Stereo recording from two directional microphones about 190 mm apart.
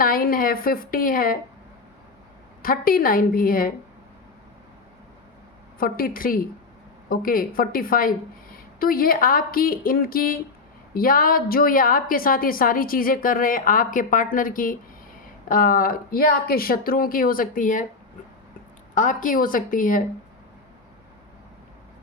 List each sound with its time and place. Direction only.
0.0 s a woman's voice: 50° left (ahead or behind)
2.6 s a woman's voice: 50° left (ahead or behind)
5.8 s a woman's voice: 50° left (ahead or behind)
18.9 s a woman's voice: 45° left (ahead or behind)